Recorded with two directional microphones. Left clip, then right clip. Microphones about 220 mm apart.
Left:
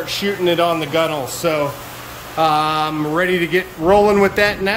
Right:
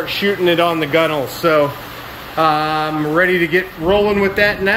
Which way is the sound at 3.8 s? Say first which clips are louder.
Left 4 dB; 20° left (ahead or behind).